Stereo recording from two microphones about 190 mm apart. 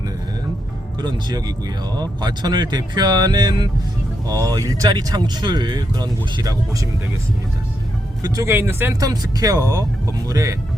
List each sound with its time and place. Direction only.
1.0 s speech: 20° right (ahead or behind)
8.2 s speech: 15° right (ahead or behind)